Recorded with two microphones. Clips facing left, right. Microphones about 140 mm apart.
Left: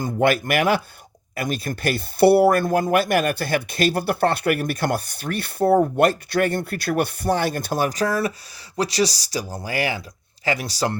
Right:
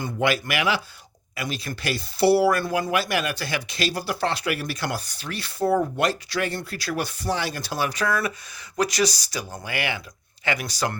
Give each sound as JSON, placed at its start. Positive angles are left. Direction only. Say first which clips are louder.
{"t": 0.0, "sound": "speech", "louder": "left 4 dB", "side_deg": 50}